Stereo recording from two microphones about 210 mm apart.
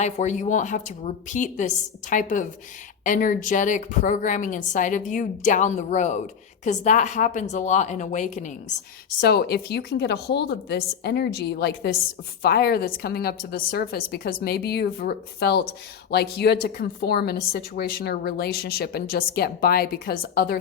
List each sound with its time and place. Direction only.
0.0 s a woman's voice: 35° left (ahead or behind)
9.2 s a woman's voice: 50° left (ahead or behind)